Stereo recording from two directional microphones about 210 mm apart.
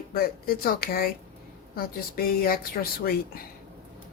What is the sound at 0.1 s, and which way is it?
Speech, 45° left (ahead or behind).